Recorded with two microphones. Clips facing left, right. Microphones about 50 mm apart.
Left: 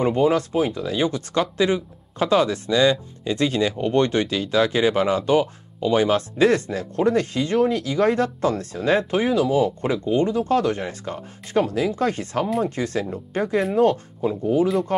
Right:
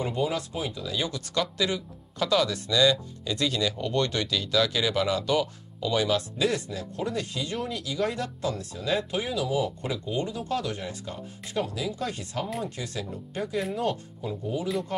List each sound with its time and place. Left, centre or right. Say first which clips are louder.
0.0 s speech: left 9 dB; left